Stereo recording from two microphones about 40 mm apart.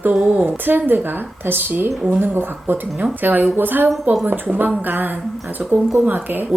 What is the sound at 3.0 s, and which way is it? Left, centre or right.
A woman's voice, right.